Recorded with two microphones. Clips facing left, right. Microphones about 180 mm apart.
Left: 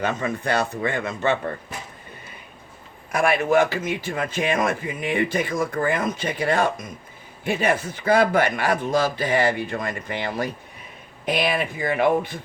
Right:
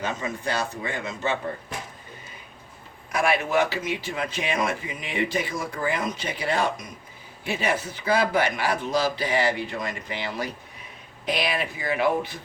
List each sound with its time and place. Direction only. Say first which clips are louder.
0.0 s speech: left 4 dB; 60° left (ahead or behind)
3.1 s a man's voice: left 4 dB; 50° left (ahead or behind)